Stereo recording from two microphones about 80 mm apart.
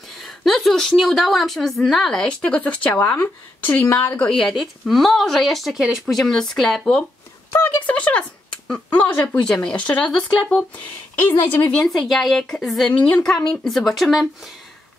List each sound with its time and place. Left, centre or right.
0.2 s a woman's voice: centre; by 4.3 s left
4.3 s a woman's voice: centre
11.1 s a woman's voice: left
11.7 s a woman's voice: centre
12.9 s a woman's voice: centre
13.7 s a woman's voice: centre